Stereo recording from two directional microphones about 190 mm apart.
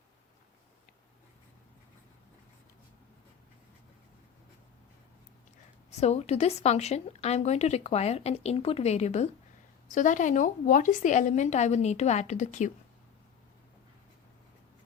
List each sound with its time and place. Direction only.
6.0 s a woman's voice: 35° left (ahead or behind)